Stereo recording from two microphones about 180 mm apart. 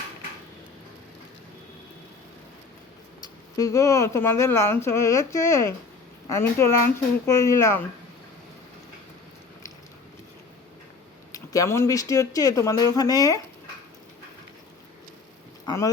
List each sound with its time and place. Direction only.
3.6 s speech: 15° left (ahead or behind)
11.3 s speech: 20° left (ahead or behind)
15.6 s speech: 20° left (ahead or behind)